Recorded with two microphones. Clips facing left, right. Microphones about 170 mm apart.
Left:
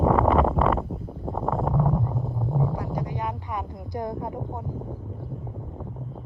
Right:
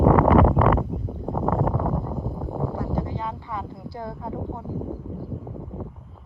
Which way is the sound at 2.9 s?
15° left (ahead or behind).